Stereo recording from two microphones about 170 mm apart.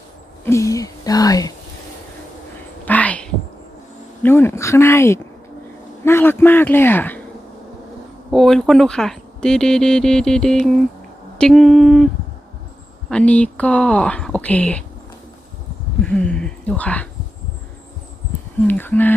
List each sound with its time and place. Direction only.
0.4 s speech: 15° left (ahead or behind)
2.8 s a sound: 10° left (ahead or behind)
4.2 s speech: 15° left (ahead or behind)
8.3 s speech: centre (ahead or behind)
13.1 s speech: 5° left (ahead or behind)
16.0 s speech: 5° left (ahead or behind)
18.7 s speech: 10° left (ahead or behind)